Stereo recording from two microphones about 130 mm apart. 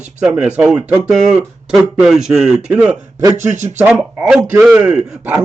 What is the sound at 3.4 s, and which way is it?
Speech, 65° right (ahead or behind).